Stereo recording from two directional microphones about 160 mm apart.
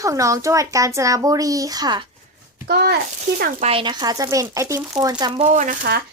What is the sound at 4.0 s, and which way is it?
Speech, 20° right (ahead or behind).